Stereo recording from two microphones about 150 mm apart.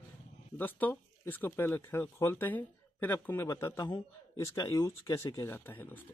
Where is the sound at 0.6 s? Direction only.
10° left (ahead or behind).